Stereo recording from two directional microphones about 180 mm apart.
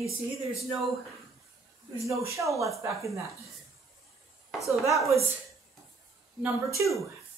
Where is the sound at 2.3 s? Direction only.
15° right (ahead or behind).